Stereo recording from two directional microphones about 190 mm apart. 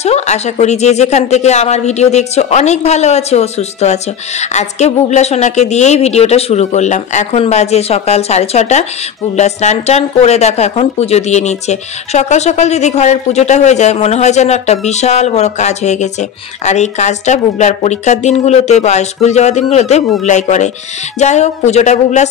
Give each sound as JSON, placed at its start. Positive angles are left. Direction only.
{"t": 0.0, "sound": "speech", "side_deg": 35}